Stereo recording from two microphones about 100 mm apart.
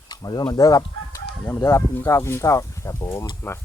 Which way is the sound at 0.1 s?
45° left (ahead or behind).